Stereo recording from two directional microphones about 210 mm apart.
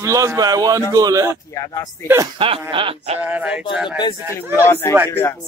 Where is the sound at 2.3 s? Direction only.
25° right (ahead or behind).